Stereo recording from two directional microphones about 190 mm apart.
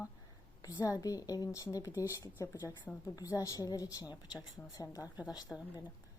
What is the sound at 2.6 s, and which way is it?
Speech, 10° right (ahead or behind).